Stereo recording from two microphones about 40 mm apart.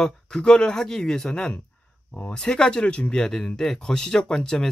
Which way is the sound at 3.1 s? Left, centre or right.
Centre.